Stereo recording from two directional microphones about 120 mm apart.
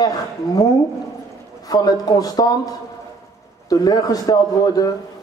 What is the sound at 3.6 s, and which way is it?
A man's voice, 30° left (ahead or behind).